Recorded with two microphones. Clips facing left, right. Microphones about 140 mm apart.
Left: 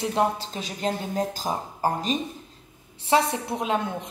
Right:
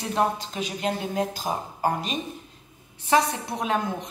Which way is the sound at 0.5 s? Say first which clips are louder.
Right 3 dB; 30° left (ahead or behind).